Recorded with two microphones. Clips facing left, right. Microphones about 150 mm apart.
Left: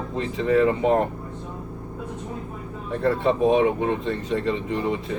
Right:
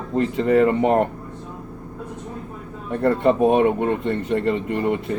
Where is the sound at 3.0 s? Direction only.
60° right (ahead or behind).